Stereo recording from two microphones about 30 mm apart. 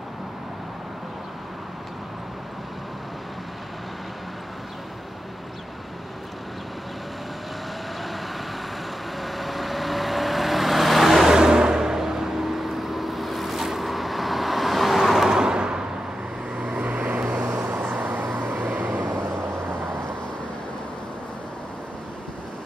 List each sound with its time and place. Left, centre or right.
9.2 s vehicle: centre
11.2 s vehicle: right; by 15.2 s centre
15.2 s vehicle: right
16.7 s vehicle: right
17.5 s vehicle: right